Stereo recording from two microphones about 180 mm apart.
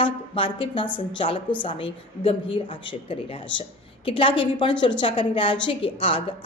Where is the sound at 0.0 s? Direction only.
30° left (ahead or behind).